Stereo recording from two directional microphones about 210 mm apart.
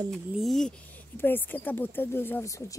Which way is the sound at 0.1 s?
Centre (ahead or behind).